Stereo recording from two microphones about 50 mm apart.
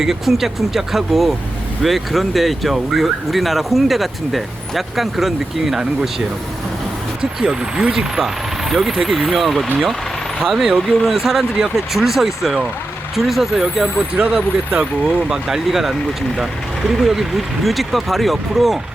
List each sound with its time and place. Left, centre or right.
0.0 s speech: centre
14.2 s speech: right
15.3 s speech: centre
17.0 s speech: centre